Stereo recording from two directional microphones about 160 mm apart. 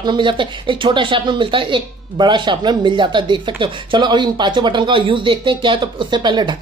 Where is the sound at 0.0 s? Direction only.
30° right (ahead or behind).